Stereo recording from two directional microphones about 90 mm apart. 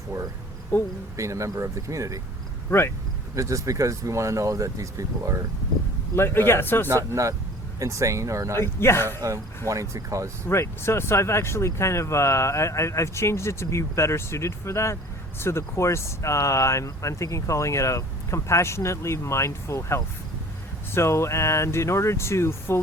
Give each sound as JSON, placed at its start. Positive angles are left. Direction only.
{"t": 1.1, "sound": "speech", "side_deg": -35}
{"t": 2.6, "sound": "speech", "side_deg": 30}
{"t": 3.3, "sound": "speech", "side_deg": -35}
{"t": 6.1, "sound": "a man's voice", "side_deg": 30}
{"t": 7.1, "sound": "speech", "side_deg": -35}
{"t": 8.5, "sound": "a man's voice", "side_deg": 30}
{"t": 9.6, "sound": "speech", "side_deg": -35}
{"t": 10.4, "sound": "speech", "side_deg": 30}